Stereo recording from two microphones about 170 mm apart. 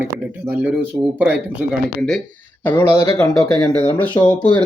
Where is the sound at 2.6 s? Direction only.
15° left (ahead or behind).